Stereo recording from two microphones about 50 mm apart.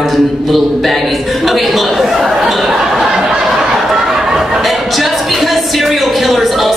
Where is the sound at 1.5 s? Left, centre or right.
Centre.